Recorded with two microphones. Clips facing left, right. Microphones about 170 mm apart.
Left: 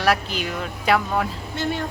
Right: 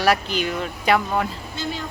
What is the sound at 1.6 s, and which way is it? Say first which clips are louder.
Speech: left 4 dB; 65° left (ahead or behind).